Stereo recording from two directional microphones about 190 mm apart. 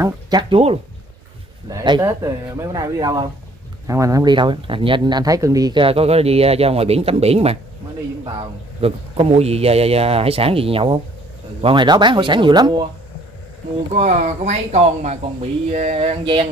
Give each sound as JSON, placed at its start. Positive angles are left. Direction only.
{"t": 0.0, "sound": "speech", "side_deg": -20}
{"t": 1.7, "sound": "speech", "side_deg": -15}
{"t": 13.9, "sound": "speech", "side_deg": -40}